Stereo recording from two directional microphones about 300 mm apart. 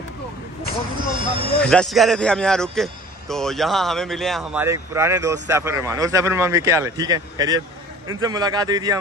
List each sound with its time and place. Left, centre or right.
0.9 s speech: centre
1.6 s a man's voice: centre